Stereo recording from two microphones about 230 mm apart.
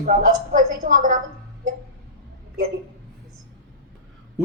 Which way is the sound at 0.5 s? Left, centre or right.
Right.